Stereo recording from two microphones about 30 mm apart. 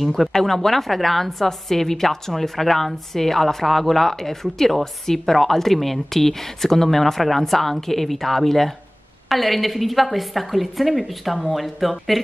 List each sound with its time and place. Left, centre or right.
0.0 s a woman's voice: centre
0.3 s a woman's voice: centre